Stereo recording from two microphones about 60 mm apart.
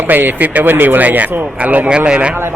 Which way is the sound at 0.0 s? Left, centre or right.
Right.